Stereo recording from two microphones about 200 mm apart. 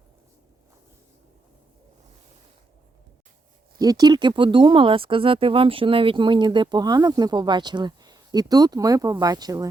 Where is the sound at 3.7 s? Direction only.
20° right (ahead or behind).